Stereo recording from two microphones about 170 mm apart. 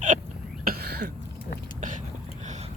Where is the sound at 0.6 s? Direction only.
60° right (ahead or behind).